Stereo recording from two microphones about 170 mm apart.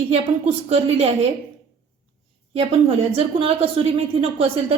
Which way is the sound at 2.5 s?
35° right (ahead or behind).